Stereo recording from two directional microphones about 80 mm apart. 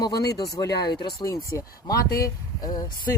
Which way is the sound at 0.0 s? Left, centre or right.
Left.